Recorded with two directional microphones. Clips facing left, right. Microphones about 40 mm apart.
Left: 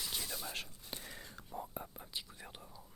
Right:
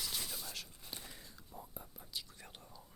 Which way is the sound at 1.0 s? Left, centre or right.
Left.